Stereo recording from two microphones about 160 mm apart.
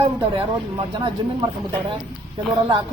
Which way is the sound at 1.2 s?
30° right (ahead or behind).